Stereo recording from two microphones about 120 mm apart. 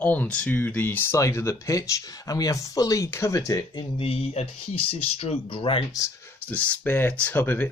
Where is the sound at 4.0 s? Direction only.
55° left (ahead or behind).